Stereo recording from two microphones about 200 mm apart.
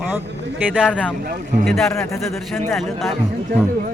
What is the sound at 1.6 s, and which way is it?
A man's voice, centre (ahead or behind).